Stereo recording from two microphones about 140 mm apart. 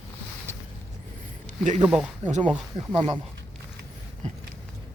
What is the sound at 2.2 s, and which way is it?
Speech, 60° right (ahead or behind).